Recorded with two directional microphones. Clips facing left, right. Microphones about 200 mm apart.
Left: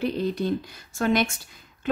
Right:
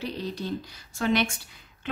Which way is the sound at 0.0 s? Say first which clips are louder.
Left 7 dB; 55° left (ahead or behind).